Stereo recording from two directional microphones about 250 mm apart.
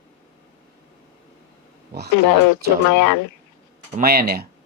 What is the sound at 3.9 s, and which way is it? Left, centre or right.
Speech, right.